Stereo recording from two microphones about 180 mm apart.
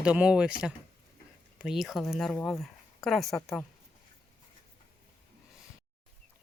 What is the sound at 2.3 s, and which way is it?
Speech, 10° left (ahead or behind).